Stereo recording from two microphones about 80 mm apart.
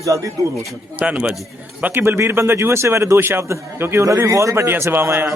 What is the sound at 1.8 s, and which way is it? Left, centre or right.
Speech, right.